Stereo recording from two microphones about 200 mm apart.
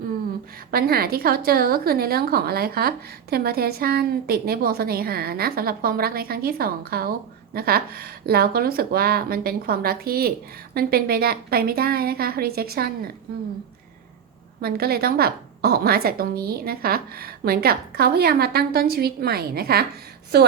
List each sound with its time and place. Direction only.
0.7 s a woman's voice: 50° right (ahead or behind)
14.6 s a woman's voice: 50° right (ahead or behind)